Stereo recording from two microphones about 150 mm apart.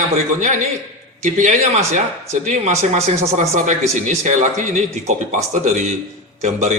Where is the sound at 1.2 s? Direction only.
50° right (ahead or behind).